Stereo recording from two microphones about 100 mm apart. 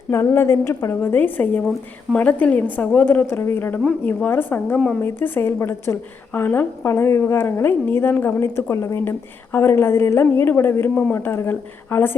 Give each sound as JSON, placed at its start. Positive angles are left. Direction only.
{"t": 0.1, "sound": "a woman's voice", "side_deg": 30}